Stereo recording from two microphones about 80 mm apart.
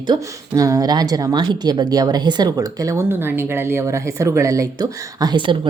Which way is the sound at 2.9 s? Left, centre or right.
Right.